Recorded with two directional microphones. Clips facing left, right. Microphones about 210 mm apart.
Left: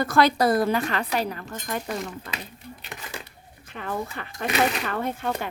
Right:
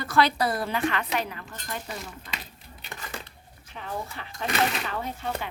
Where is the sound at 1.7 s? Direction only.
55° left (ahead or behind).